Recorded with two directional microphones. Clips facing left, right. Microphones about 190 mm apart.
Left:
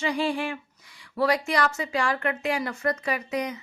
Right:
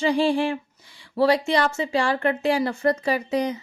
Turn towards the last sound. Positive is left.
turn(degrees=-30)  # may be behind; listen again after turning